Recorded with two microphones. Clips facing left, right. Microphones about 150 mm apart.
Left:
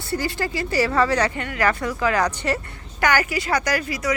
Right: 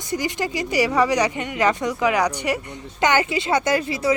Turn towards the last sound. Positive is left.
turn(degrees=-25)  # may be behind; listen again after turning